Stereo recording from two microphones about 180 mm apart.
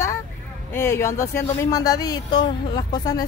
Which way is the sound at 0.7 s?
15° left (ahead or behind).